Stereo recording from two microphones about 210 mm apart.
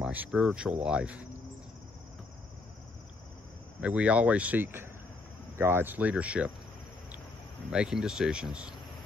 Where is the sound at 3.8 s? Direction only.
5° right (ahead or behind).